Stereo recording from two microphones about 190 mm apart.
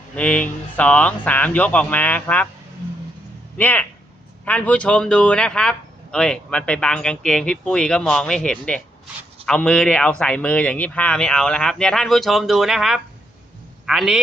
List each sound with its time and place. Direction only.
0.2 s speech: 5° left (ahead or behind)
3.6 s speech: 10° left (ahead or behind)